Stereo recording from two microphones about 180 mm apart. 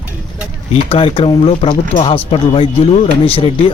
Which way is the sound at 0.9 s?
30° left (ahead or behind).